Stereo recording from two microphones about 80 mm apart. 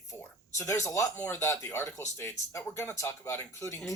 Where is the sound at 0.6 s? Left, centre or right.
Left.